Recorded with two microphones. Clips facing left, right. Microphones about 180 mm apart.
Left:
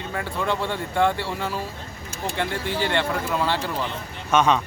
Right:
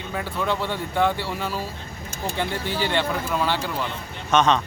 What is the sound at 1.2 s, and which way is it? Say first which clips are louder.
Speech: even; 25° left (ahead or behind).